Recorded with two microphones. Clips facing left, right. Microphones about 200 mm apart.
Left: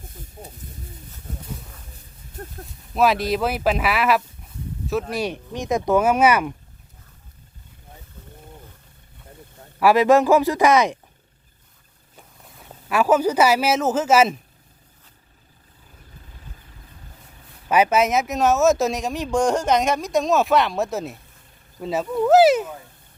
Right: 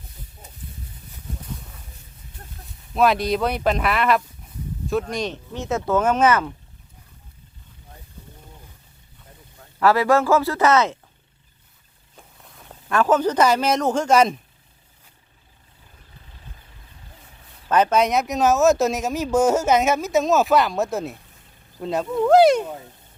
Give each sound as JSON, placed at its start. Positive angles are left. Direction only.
{"t": 2.4, "sound": "a sound", "side_deg": 50}
{"t": 2.9, "sound": "speech", "side_deg": 0}
{"t": 9.8, "sound": "speech", "side_deg": 15}
{"t": 12.1, "sound": "speech", "side_deg": 5}
{"t": 17.7, "sound": "speech", "side_deg": 10}